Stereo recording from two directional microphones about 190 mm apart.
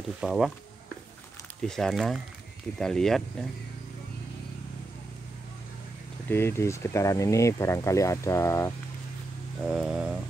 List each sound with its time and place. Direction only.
0.2 s speech: centre (ahead or behind)
1.6 s speech: 5° left (ahead or behind)
6.2 s speech: 10° left (ahead or behind)
9.6 s speech: 5° right (ahead or behind)